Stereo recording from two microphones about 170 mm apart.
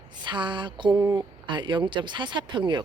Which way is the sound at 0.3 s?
30° right (ahead or behind).